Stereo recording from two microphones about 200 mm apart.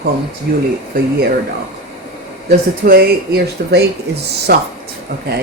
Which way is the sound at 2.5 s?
50° right (ahead or behind).